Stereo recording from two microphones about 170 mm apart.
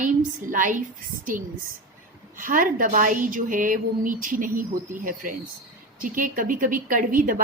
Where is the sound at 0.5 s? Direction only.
50° right (ahead or behind).